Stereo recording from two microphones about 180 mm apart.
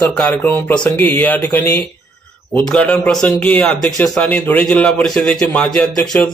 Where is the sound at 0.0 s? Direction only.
10° left (ahead or behind).